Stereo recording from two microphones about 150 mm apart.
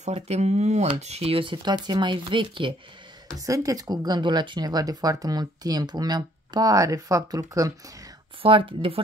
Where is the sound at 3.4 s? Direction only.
20° right (ahead or behind).